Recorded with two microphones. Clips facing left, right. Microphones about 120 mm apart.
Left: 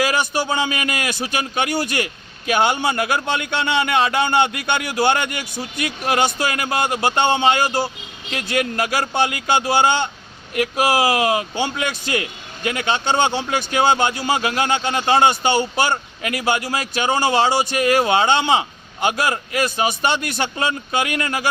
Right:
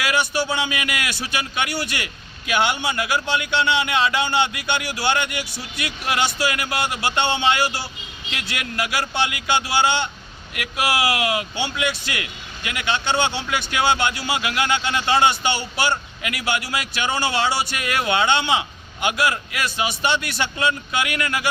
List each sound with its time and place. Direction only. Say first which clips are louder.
0.0 s speech: left 2 dB; 40° left (ahead or behind)